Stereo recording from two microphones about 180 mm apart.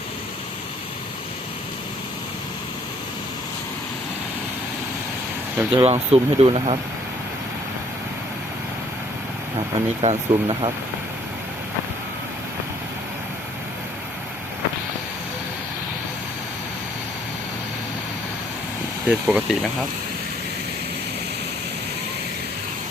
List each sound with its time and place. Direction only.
5.7 s speech: 35° right (ahead or behind)
9.6 s speech: 35° right (ahead or behind)
19.0 s speech: 5° right (ahead or behind)